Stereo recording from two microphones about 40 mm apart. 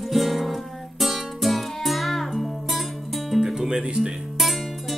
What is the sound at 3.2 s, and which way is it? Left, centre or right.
Music, centre.